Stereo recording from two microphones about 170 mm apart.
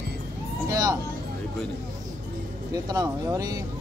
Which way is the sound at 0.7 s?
20° right (ahead or behind).